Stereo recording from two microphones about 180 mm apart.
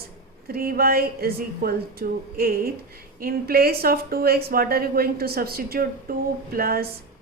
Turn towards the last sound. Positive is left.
turn(degrees=-55)  # may be behind; listen again after turning